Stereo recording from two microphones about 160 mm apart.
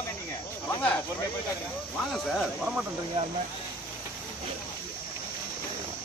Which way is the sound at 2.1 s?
Centre (ahead or behind).